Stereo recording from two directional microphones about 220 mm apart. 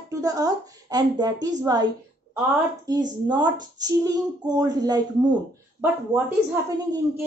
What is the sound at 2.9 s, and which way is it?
A woman's voice, 20° right (ahead or behind).